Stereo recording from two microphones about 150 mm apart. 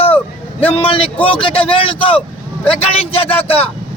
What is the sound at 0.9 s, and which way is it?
Speech, 35° left (ahead or behind).